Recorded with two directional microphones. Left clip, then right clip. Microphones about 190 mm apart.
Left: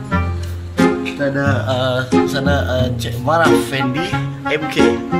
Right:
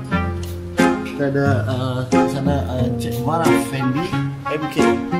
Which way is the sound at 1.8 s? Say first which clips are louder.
Left 3 dB; 10° left (ahead or behind).